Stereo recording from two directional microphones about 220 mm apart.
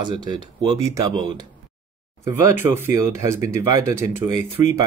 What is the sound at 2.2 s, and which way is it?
Speech, 10° right (ahead or behind).